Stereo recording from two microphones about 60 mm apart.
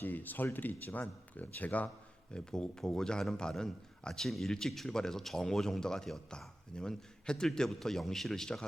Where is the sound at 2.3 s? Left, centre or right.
Centre.